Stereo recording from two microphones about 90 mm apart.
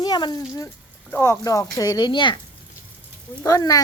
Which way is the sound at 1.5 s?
40° left (ahead or behind).